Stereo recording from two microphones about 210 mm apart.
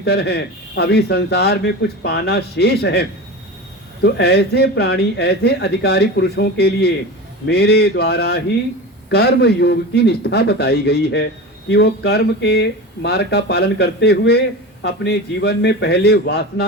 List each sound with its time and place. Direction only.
0.0 s speech: 50° left (ahead or behind)